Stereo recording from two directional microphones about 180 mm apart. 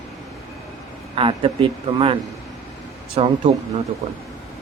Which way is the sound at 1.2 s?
30° right (ahead or behind).